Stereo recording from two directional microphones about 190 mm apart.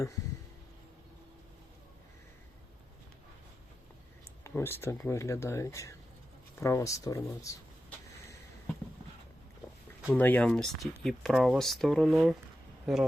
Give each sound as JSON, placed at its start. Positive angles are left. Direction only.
{"t": 4.4, "sound": "speech", "side_deg": 10}
{"t": 10.1, "sound": "speech", "side_deg": 10}